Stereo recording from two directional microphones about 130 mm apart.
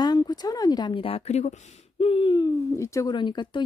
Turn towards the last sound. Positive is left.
turn(degrees=35)  # may be behind; listen again after turning